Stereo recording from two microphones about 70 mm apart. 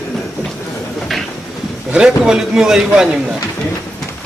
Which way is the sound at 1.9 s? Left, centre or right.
Centre.